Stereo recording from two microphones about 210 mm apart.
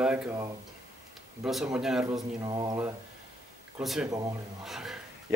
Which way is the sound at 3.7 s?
5° right (ahead or behind).